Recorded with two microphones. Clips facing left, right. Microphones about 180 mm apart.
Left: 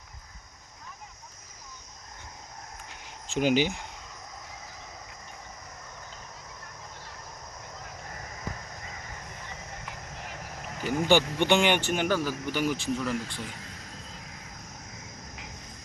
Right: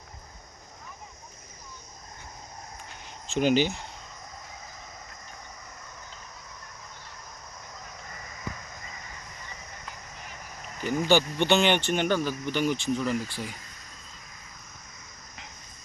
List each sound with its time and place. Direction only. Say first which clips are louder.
3.2 s speech: right 1 dB; 10° left (ahead or behind)
9.9 s vehicle: left 3 dB; 80° left
10.8 s speech: even; 15° left (ahead or behind); by 13.5 s 5° right (ahead or behind)
13.6 s a sound: left 6 dB; 85° left